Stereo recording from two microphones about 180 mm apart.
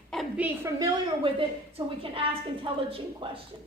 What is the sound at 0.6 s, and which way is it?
Speech, 20° right (ahead or behind).